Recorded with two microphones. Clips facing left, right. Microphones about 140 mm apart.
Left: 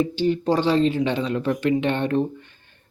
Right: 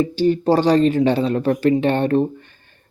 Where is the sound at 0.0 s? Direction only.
40° right (ahead or behind).